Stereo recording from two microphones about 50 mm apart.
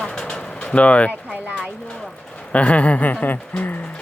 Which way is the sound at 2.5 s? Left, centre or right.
Left.